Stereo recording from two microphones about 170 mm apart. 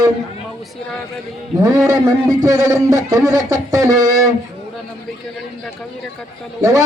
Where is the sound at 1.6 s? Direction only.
20° right (ahead or behind).